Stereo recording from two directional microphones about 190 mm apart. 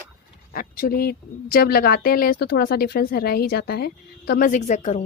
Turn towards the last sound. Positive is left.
turn(degrees=35)  # may be behind; listen again after turning